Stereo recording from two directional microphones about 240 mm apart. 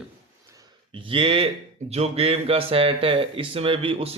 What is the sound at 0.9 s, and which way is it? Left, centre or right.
Speech, right.